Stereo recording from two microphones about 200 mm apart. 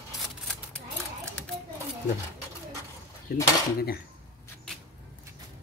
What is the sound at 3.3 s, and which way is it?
Speech, 45° left (ahead or behind).